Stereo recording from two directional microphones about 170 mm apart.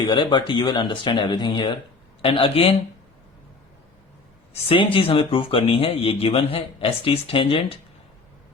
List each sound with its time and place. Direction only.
0.0 s speech: 25° left (ahead or behind)
4.5 s speech: 30° left (ahead or behind)